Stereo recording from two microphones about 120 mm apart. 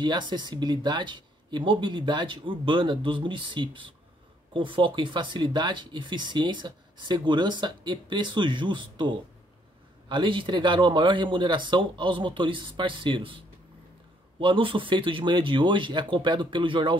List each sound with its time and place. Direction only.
0.0 s speech: 40° right (ahead or behind)
14.4 s speech: 45° right (ahead or behind)